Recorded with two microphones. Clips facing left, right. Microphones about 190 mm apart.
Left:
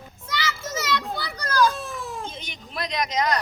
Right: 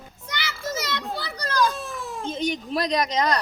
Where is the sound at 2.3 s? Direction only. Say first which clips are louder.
Right 12 dB; 40° right (ahead or behind).